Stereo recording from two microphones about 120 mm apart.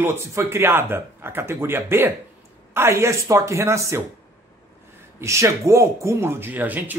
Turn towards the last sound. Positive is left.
turn(degrees=-15)  # may be behind; listen again after turning